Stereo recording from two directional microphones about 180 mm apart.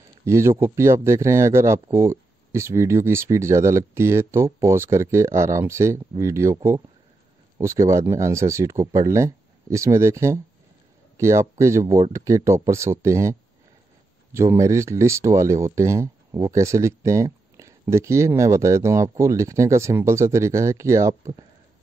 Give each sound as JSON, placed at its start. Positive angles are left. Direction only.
{"t": 0.2, "sound": "speech", "side_deg": -15}